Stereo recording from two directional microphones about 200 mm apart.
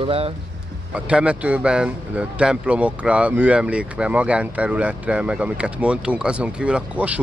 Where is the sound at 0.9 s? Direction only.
5° right (ahead or behind).